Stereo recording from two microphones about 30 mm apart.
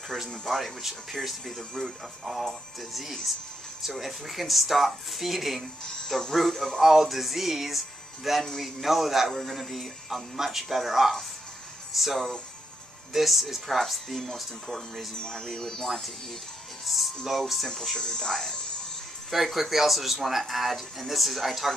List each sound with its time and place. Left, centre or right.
0.5 s speech: centre
2.9 s speech: centre
15.1 s speech: left
15.4 s speech: centre
16.8 s speech: centre
17.9 s speech: centre
19.3 s speech: centre